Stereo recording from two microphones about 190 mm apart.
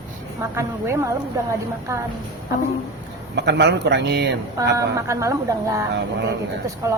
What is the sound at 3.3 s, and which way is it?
A man's voice, 65° right (ahead or behind).